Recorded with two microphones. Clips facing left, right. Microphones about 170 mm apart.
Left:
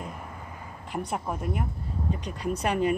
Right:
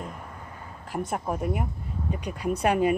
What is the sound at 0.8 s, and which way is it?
Speech, 5° right (ahead or behind).